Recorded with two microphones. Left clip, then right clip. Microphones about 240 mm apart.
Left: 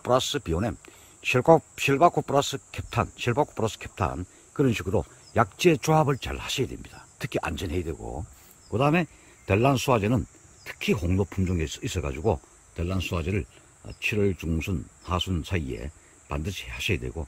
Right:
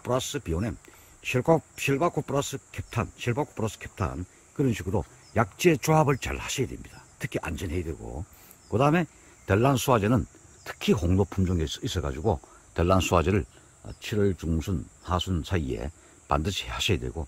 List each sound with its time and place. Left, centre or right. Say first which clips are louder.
0.0 s speech: left 5 dB; centre
12.7 s speech: right 9 dB; centre